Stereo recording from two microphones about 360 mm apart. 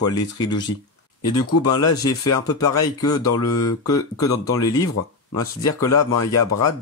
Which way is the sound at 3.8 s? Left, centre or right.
Centre.